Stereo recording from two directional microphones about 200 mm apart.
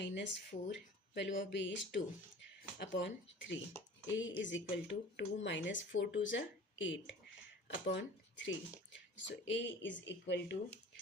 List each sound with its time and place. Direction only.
0.0 s speech: 60° left (ahead or behind)